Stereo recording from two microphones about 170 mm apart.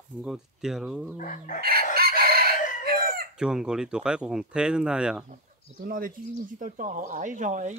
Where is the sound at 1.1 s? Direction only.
50° left (ahead or behind).